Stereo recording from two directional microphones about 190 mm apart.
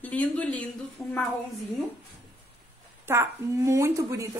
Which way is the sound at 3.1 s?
15° right (ahead or behind).